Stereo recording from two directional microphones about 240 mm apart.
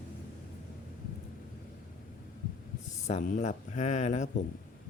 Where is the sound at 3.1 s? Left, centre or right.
Left.